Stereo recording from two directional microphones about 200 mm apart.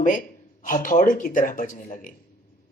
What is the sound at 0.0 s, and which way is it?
Speech, 40° left (ahead or behind).